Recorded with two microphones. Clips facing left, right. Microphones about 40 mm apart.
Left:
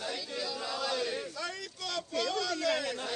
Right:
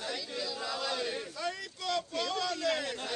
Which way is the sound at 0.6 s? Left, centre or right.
Centre.